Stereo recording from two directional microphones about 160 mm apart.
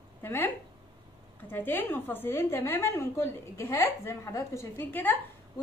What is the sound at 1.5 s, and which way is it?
A woman's voice, 15° left (ahead or behind).